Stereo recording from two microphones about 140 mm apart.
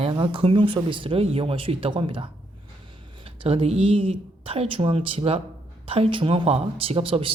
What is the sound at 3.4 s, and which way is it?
Speech, 45° right (ahead or behind).